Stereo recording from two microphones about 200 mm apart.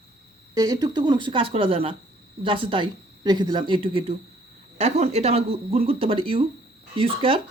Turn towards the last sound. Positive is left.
turn(degrees=-30)  # may be behind; listen again after turning